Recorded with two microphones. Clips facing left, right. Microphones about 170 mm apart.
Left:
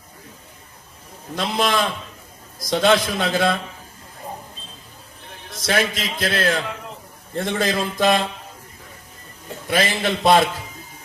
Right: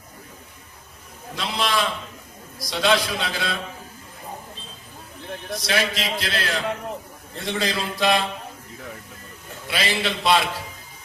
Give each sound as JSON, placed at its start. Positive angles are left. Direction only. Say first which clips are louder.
{"t": 1.4, "sound": "a man's voice", "louder": "left 4 dB", "side_deg": 50}
{"t": 5.6, "sound": "a man's voice", "louder": "left 3 dB", "side_deg": 50}
{"t": 9.6, "sound": "a man's voice", "louder": "left 4 dB", "side_deg": 50}